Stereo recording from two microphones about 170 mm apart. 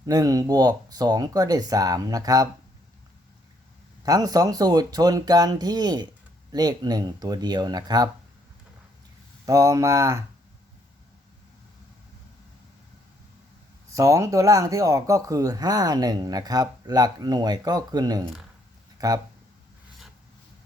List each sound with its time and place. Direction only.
0.0 s speech: 20° right (ahead or behind)
4.0 s speech: 20° right (ahead or behind)
9.5 s speech: 20° right (ahead or behind)
13.9 s speech: 20° right (ahead or behind)